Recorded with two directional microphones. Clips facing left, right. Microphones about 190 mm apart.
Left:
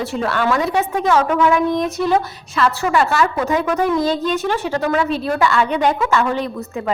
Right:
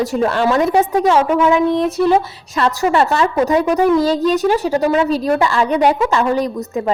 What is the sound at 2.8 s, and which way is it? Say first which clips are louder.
A woman's voice: right 4 dB; 25° right (ahead or behind).